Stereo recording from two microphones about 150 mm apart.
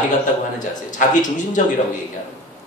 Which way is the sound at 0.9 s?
60° left (ahead or behind).